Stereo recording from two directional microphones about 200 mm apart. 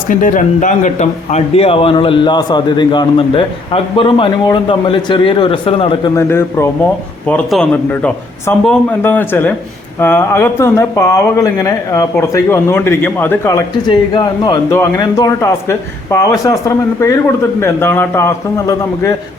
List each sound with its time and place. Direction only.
0.1 s speech: 40° left (ahead or behind)
6.1 s speech: 15° left (ahead or behind)